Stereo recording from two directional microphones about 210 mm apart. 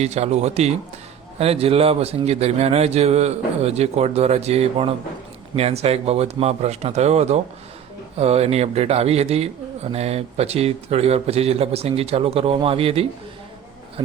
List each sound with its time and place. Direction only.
0.0 s speech: 30° right (ahead or behind)